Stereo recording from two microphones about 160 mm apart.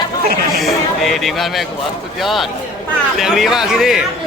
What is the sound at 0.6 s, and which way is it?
Speech, centre (ahead or behind).